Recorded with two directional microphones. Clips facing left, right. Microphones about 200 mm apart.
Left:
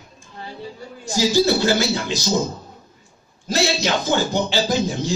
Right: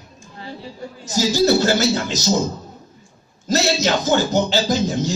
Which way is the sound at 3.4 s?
40° right (ahead or behind).